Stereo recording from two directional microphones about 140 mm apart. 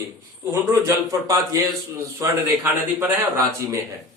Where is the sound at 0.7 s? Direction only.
20° right (ahead or behind).